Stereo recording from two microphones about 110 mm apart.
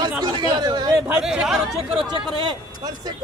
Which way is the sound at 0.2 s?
45° right (ahead or behind).